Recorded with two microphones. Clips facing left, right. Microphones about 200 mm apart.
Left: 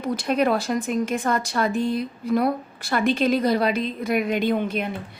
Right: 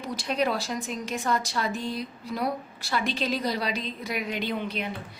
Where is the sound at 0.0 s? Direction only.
55° left (ahead or behind).